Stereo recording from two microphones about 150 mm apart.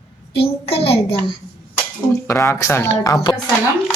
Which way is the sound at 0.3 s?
40° left (ahead or behind).